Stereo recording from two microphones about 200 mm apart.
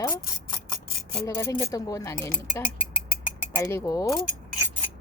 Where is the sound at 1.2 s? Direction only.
15° left (ahead or behind).